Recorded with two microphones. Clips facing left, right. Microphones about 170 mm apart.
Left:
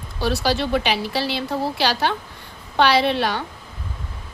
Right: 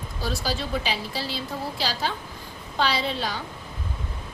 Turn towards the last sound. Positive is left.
turn(degrees=70)  # may be behind; listen again after turning